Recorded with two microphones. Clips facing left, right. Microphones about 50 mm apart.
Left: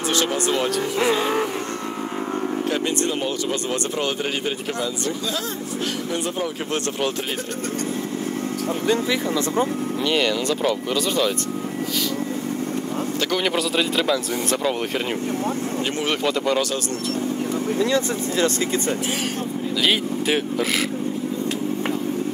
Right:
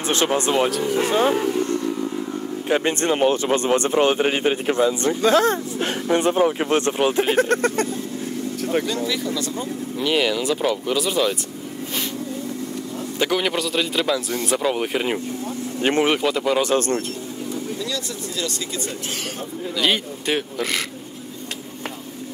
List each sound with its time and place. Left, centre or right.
0.1 s speech: right
1.3 s speech: left
2.7 s speech: right
5.2 s speech: right
7.0 s speech: centre
7.3 s speech: right
8.8 s speech: left
10.0 s speech: centre
13.3 s speech: centre
15.8 s speech: right
16.1 s speech: centre
17.7 s speech: left
19.8 s speech: centre